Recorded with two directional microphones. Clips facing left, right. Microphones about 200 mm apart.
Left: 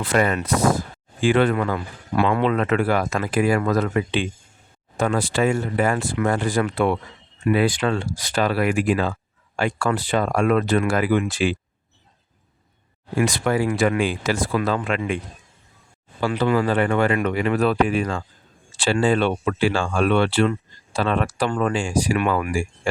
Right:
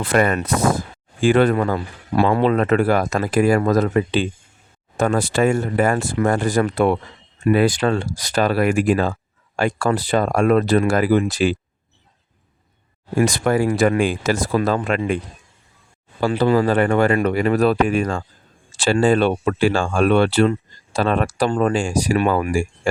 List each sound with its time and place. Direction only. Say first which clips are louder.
0.0 s speech: right 3 dB; 50° right (ahead or behind)
13.1 s speech: right 3 dB; 45° right (ahead or behind)
16.2 s speech: right 3 dB; 35° right (ahead or behind)